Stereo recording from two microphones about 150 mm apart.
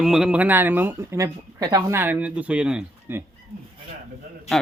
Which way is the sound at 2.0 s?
10° right (ahead or behind).